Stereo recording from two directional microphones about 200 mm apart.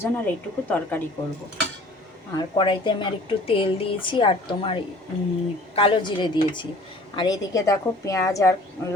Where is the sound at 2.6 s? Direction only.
25° left (ahead or behind).